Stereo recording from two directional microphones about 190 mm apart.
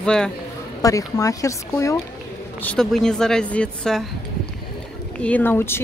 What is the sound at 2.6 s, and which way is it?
A woman's voice, 5° left (ahead or behind).